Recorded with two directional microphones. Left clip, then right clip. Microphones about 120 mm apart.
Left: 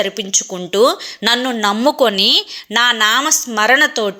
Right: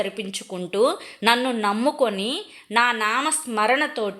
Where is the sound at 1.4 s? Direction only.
20° left (ahead or behind).